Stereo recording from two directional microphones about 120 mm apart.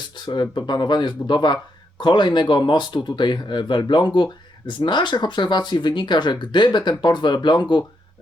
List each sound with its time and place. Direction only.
0.3 s speech: 40° left (ahead or behind)